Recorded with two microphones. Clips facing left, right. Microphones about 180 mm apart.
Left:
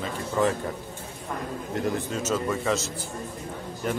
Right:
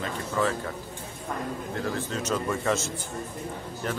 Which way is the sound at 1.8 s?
15° left (ahead or behind).